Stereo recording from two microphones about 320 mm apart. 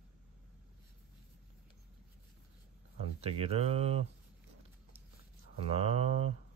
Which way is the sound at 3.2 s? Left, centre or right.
Centre.